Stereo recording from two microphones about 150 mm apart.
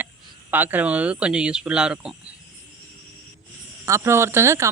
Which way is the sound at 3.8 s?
20° right (ahead or behind).